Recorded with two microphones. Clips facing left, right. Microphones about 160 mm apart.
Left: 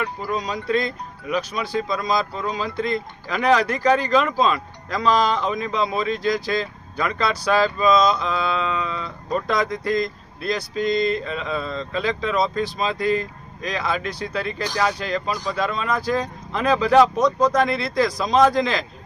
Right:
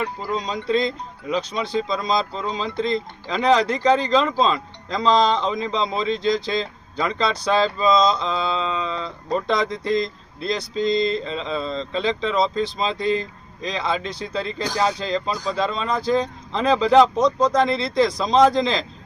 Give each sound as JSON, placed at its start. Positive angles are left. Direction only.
{"t": 0.0, "sound": "speech", "side_deg": -25}